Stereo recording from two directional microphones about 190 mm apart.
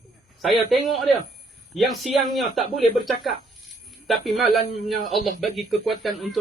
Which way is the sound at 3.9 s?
Centre (ahead or behind).